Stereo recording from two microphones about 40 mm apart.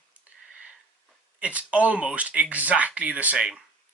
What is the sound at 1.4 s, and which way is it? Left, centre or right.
Speech, right.